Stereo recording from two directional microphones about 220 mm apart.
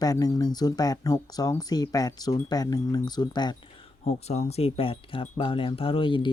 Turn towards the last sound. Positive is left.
turn(degrees=25)  # may be behind; listen again after turning